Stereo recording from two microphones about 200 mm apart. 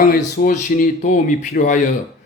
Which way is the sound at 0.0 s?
45° left (ahead or behind).